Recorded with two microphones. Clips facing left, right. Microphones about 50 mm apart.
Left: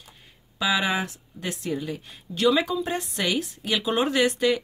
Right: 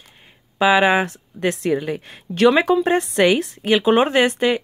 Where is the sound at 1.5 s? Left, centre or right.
Right.